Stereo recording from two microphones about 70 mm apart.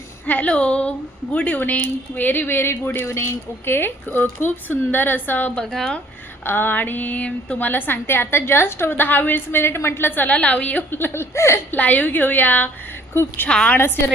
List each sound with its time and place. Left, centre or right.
0.3 s speech: centre
5.5 s speech: centre
6.4 s speech: left
7.7 s speech: left
10.9 s speech: left
11.8 s speech: left
13.5 s speech: centre
13.7 s speech: left